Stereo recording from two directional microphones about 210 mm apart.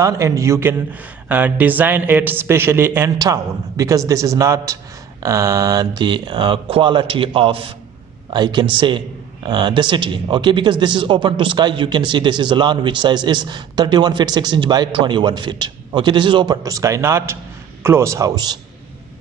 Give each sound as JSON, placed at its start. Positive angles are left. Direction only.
{"t": 0.0, "sound": "a man's voice", "side_deg": -15}